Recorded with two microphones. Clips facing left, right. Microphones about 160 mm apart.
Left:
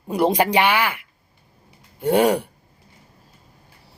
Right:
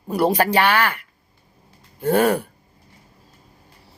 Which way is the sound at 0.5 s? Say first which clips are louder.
Even; 10° left (ahead or behind).